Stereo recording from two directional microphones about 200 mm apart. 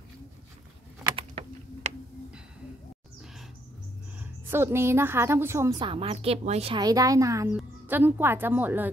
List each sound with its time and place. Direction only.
4.2 s a woman's voice: 10° right (ahead or behind)